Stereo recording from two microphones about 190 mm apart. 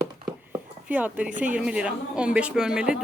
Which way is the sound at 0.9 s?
10° right (ahead or behind).